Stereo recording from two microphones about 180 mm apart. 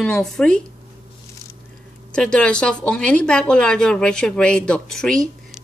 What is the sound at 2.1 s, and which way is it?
Speech, 5° left (ahead or behind).